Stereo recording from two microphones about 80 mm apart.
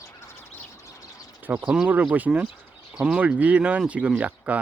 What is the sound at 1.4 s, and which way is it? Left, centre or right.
Speech, right.